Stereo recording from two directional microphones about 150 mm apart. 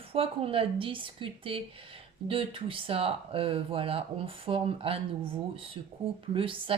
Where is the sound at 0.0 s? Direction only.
40° right (ahead or behind).